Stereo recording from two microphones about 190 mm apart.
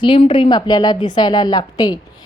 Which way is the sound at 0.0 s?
25° left (ahead or behind).